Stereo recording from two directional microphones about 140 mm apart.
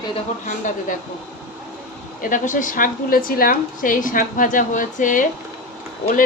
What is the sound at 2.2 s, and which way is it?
A woman's voice, 70° left (ahead or behind).